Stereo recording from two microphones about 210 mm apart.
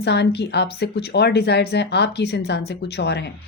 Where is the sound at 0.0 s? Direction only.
50° left (ahead or behind).